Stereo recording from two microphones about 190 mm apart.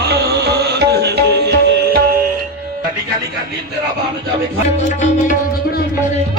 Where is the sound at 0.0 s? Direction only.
60° right (ahead or behind).